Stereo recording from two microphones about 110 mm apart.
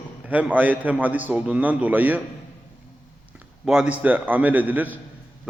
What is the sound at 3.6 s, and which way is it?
A man's voice, 5° right (ahead or behind).